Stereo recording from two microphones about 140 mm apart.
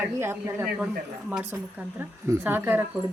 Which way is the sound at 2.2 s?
15° right (ahead or behind).